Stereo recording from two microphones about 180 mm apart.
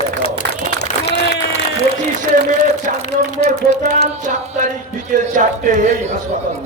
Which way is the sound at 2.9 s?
45° right (ahead or behind).